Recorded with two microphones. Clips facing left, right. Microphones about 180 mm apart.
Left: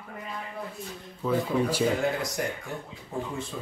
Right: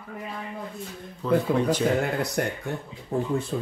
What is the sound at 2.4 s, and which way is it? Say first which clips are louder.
Speech: right 4 dB; 60° right (ahead or behind).